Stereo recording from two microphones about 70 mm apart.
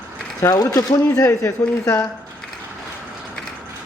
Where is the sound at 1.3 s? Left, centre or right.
Left.